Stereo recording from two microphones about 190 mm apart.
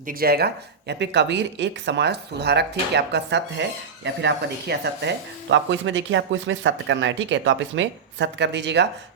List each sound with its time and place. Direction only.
0.0 s speech: 50° right (ahead or behind); by 8.9 s 65° right (ahead or behind)